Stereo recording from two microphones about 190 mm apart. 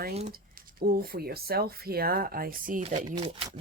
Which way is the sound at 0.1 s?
35° right (ahead or behind).